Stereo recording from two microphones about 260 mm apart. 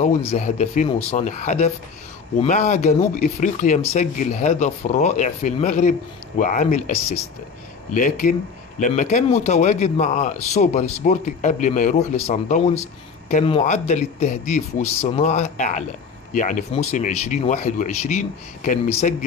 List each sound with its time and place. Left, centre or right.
0.0 s speech: left